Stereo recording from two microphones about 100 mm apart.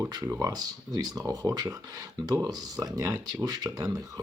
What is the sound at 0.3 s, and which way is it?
Speech, 30° right (ahead or behind).